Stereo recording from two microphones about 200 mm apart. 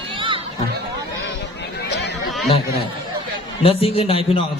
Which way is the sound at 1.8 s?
60° left (ahead or behind).